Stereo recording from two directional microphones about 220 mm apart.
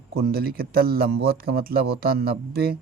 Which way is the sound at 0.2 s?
45° right (ahead or behind).